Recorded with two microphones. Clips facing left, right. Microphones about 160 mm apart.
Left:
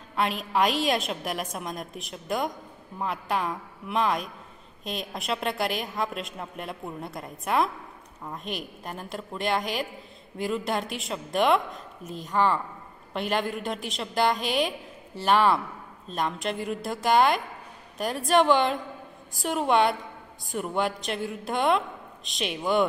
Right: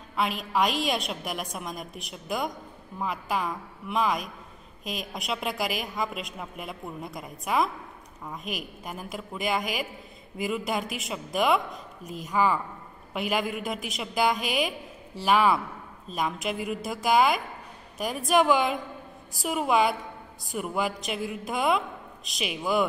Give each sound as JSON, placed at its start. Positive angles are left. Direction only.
{"t": 0.1, "sound": "a woman's voice", "side_deg": 0}